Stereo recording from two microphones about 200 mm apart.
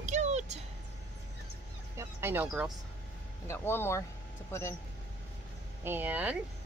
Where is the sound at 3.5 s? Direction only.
10° left (ahead or behind).